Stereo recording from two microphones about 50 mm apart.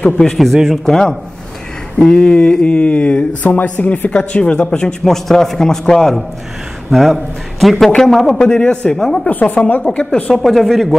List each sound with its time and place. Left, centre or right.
0.0 s a man's voice: centre
4.7 s a man's voice: centre
8.5 s speech: left
8.9 s a man's voice: centre
9.3 s speech: left
9.9 s speech: left
10.3 s a man's voice: centre